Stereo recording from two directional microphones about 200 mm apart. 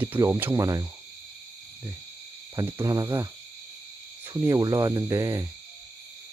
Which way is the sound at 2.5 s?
15° right (ahead or behind).